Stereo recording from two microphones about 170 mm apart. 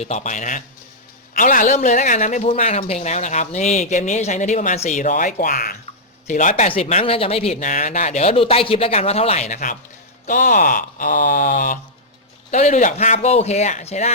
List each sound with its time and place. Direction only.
0.0 s speech: 45° left (ahead or behind)
6.7 s speech: 35° left (ahead or behind); by 11.8 s 50° left (ahead or behind)
12.5 s speech: 40° left (ahead or behind)